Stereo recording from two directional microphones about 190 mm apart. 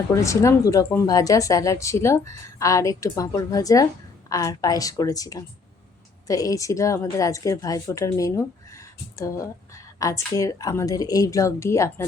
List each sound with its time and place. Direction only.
0.1 s a woman's voice: 15° left (ahead or behind)